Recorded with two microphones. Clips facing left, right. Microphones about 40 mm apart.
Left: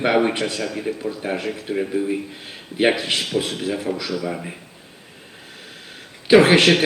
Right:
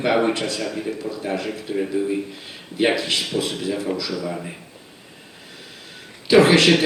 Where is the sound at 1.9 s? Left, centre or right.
Centre.